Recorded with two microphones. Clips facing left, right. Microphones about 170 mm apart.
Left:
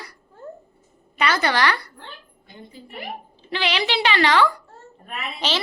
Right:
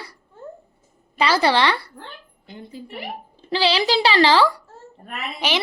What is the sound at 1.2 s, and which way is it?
Speech, 30° right (ahead or behind).